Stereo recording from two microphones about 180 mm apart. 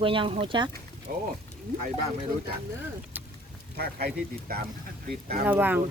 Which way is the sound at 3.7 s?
60° right (ahead or behind).